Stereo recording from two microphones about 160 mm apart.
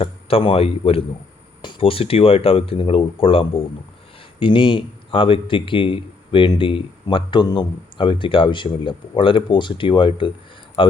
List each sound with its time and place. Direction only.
0.0 s a man's voice: 35° left (ahead or behind)